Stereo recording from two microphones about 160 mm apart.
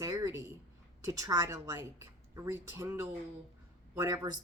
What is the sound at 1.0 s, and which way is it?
Speech, 20° right (ahead or behind).